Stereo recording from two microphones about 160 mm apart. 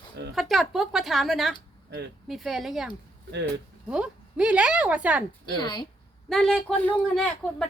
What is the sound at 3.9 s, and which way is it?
Speech, 5° right (ahead or behind).